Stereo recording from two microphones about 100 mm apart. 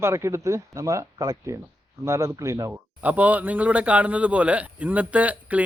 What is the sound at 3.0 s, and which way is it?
A man's voice, 15° right (ahead or behind).